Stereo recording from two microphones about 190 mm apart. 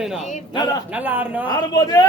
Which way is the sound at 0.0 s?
Centre (ahead or behind).